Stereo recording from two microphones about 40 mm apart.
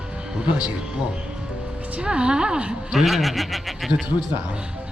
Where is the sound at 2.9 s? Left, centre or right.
Centre.